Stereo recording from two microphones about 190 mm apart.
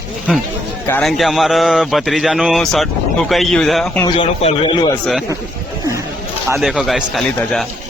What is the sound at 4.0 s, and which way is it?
Speech, 25° left (ahead or behind).